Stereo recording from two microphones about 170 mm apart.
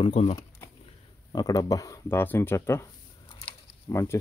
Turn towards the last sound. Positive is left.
turn(degrees=20)  # may be behind; listen again after turning